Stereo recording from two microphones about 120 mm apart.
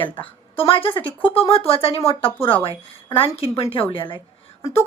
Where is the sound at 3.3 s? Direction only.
55° left (ahead or behind).